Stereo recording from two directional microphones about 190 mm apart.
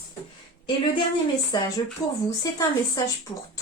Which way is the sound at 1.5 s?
20° left (ahead or behind).